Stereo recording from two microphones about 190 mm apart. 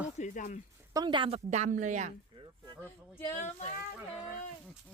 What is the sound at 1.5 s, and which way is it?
Speech, 40° right (ahead or behind).